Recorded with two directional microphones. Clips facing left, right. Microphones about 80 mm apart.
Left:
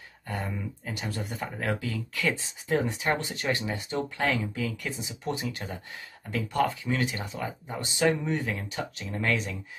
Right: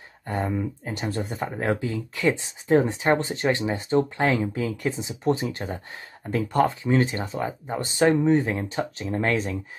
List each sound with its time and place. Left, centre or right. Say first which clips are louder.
0.3 s speech: right 8 dB; right